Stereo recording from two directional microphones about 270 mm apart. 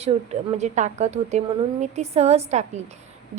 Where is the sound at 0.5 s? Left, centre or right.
Right.